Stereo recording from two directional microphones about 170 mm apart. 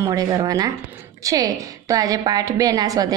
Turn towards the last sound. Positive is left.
turn(degrees=-20)  # may be behind; listen again after turning